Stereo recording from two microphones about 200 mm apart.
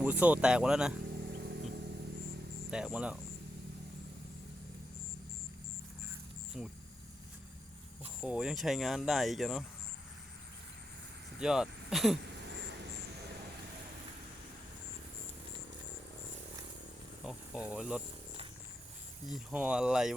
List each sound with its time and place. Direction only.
0.0 s speech: 5° right (ahead or behind)
1.2 s vehicle: 55° right (ahead or behind)
2.6 s speech: 5° right (ahead or behind)
6.5 s speech: centre (ahead or behind)
8.2 s speech: 5° right (ahead or behind)
11.3 s speech: 5° right (ahead or behind)
17.2 s speech: 5° right (ahead or behind)
19.3 s speech: 5° right (ahead or behind)